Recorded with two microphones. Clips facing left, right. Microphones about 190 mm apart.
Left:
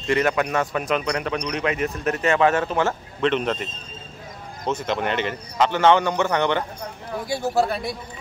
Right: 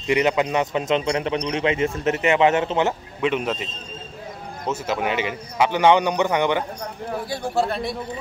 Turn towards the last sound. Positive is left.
turn(degrees=0)  # may be behind; listen again after turning